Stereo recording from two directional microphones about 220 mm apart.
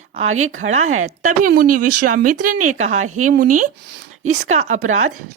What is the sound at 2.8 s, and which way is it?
Speech, 35° right (ahead or behind).